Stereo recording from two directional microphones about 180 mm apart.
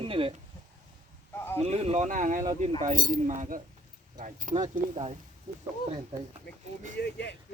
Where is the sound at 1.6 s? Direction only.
35° right (ahead or behind).